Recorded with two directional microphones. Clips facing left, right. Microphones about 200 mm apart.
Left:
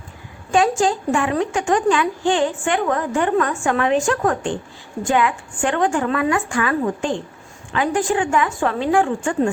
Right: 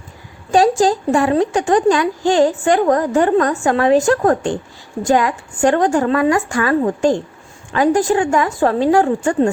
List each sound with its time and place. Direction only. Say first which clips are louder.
0.5 s speech: right 4 dB; 35° right (ahead or behind)